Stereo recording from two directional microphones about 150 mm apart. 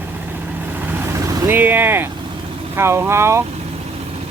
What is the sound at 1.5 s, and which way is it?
Speech, 15° right (ahead or behind).